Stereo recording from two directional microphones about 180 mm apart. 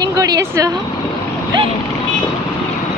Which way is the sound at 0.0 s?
20° right (ahead or behind).